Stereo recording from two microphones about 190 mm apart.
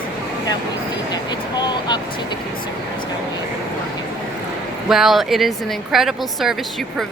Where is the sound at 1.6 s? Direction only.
20° left (ahead or behind).